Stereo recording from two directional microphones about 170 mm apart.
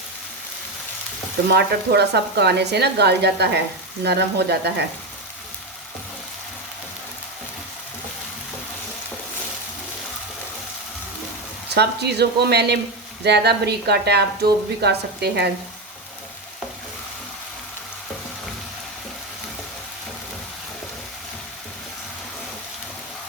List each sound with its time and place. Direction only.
1.5 s a woman's voice: 80° right
11.7 s a woman's voice: 80° right